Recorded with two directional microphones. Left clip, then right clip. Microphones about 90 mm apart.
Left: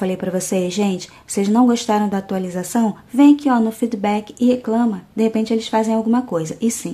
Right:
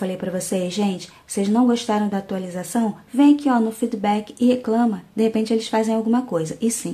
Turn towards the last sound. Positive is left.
turn(degrees=20)  # may be behind; listen again after turning